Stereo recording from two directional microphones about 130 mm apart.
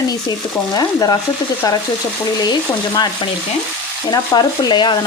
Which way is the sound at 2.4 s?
30° left (ahead or behind).